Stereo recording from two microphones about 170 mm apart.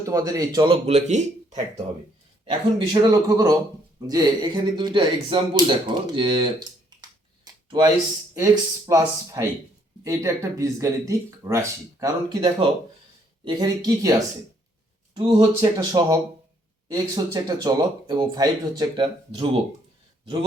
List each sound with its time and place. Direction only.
0.0 s speech: 20° right (ahead or behind); by 1.6 s 45° right (ahead or behind)
2.5 s speech: 25° right (ahead or behind)
7.4 s a sound: 25° right (ahead or behind)
8.9 s speech: 20° right (ahead or behind)